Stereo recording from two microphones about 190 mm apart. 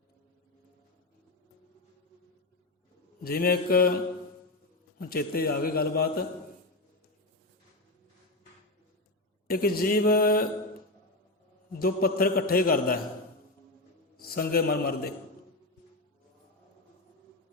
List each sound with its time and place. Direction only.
3.2 s a man's voice: 50° left (ahead or behind)
4.9 s a man's voice: 50° left (ahead or behind)
9.5 s a man's voice: 50° left (ahead or behind)
11.8 s a man's voice: 50° left (ahead or behind)
14.2 s a man's voice: 50° left (ahead or behind)